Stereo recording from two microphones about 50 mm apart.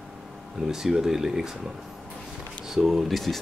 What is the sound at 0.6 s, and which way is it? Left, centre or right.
Speech, centre.